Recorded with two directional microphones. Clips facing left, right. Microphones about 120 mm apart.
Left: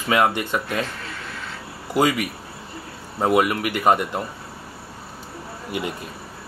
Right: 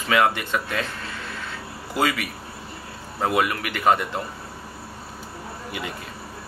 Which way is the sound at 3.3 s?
20° left (ahead or behind).